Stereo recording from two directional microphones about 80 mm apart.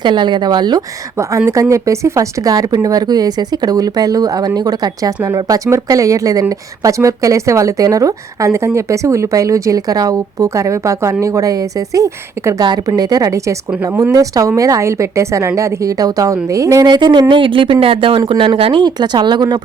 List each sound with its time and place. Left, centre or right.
0.0 s speech: right
1.7 s speech: right
5.5 s speech: right
12.6 s a woman's voice: right
16.8 s speech: right